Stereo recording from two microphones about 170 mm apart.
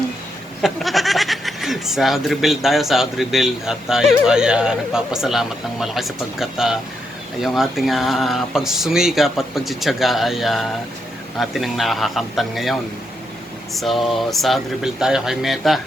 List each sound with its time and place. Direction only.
0.6 s speech: centre (ahead or behind)
13.7 s speech: centre (ahead or behind)